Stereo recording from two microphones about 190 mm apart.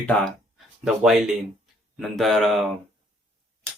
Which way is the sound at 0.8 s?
5° right (ahead or behind).